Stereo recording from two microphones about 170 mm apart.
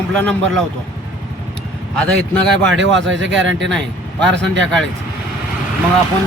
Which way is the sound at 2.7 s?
90° right.